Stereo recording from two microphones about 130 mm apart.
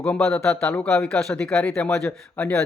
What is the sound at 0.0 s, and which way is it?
Speech, 5° left (ahead or behind).